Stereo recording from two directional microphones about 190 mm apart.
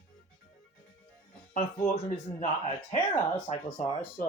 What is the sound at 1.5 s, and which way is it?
Speech, 45° left (ahead or behind).